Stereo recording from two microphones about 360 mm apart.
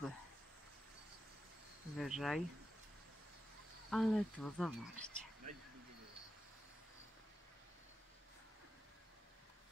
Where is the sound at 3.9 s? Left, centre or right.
Centre.